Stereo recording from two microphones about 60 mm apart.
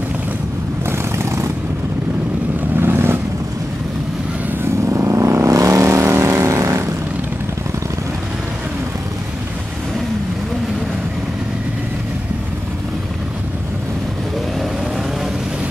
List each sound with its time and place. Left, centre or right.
0.8 s vehicle: right
2.8 s vehicle: right
4.8 s vehicle: right
5.7 s vehicle: right